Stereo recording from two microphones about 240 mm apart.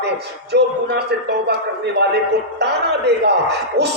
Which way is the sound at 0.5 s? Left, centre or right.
Right.